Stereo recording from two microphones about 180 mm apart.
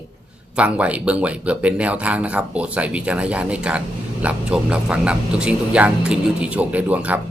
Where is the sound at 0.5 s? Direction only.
5° right (ahead or behind).